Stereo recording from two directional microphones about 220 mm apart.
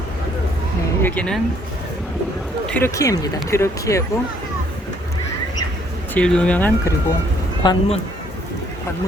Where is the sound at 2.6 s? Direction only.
10° left (ahead or behind).